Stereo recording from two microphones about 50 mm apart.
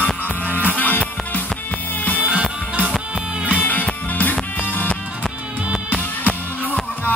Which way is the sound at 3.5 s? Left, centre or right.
Left.